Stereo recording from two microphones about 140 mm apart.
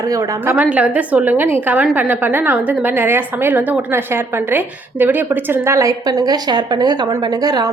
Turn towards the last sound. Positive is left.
turn(degrees=-30)  # may be behind; listen again after turning